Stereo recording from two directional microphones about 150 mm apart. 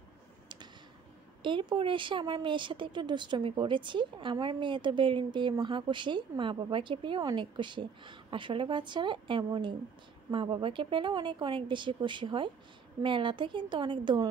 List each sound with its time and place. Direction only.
1.4 s speech: 35° right (ahead or behind)